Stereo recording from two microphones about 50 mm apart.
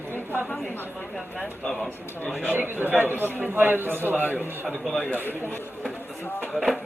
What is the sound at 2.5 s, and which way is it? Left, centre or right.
A man's voice, right.